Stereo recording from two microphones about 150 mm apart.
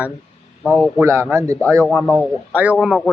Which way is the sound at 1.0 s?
15° right (ahead or behind).